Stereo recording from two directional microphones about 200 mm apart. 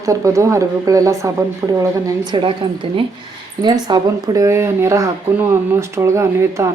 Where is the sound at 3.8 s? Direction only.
20° right (ahead or behind).